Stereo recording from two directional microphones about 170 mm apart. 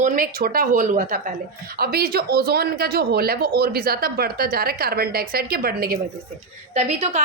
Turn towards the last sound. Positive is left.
turn(degrees=-40)  # may be behind; listen again after turning